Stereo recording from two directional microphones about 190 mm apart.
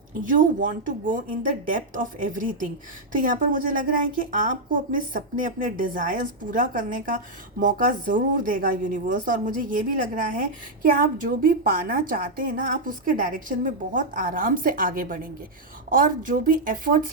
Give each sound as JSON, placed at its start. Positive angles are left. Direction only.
{"t": 0.2, "sound": "a woman's voice", "side_deg": -45}